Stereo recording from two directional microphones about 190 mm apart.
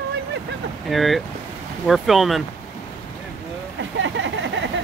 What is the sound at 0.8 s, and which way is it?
Speech, centre (ahead or behind).